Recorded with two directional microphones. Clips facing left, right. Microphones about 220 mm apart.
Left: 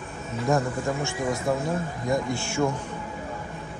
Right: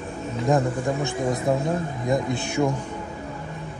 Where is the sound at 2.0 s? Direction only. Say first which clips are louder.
Right 2 dB; 20° right (ahead or behind).